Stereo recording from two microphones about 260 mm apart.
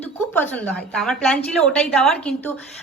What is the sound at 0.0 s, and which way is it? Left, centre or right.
A woman's voice, centre.